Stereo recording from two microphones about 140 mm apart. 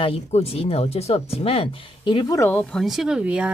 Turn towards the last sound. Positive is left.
turn(degrees=-10)  # may be behind; listen again after turning